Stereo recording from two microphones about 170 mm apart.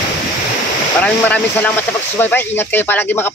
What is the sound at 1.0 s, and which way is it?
Speech, 10° left (ahead or behind).